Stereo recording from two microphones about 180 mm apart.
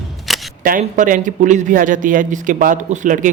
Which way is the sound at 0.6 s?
45° right (ahead or behind).